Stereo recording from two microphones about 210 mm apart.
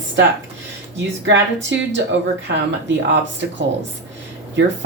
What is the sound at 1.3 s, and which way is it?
Speech, 60° right (ahead or behind).